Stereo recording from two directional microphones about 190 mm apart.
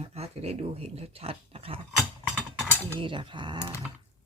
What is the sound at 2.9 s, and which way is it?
Speech, 25° right (ahead or behind).